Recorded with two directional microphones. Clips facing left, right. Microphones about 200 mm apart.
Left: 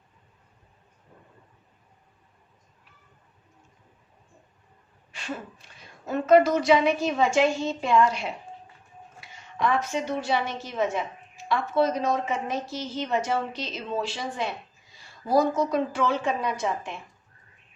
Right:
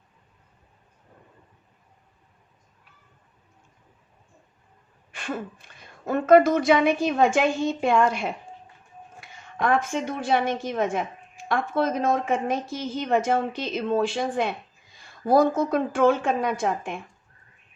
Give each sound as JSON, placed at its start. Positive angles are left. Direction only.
{"t": 5.1, "sound": "a woman's voice", "side_deg": -55}